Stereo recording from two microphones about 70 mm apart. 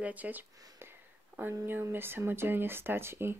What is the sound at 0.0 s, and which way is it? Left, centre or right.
Speech, right.